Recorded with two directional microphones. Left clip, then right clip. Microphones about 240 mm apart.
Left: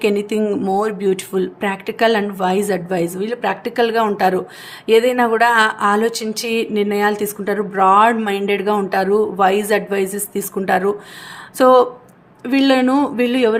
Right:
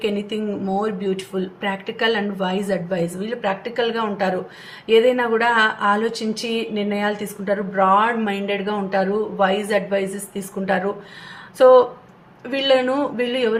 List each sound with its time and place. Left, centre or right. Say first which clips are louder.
0.0 s speech: left 6 dB; left